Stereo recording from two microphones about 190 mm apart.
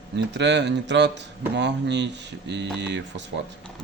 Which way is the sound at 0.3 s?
65° right (ahead or behind).